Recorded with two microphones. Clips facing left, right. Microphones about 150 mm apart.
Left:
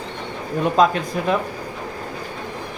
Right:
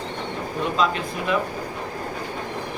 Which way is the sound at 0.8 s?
45° left (ahead or behind).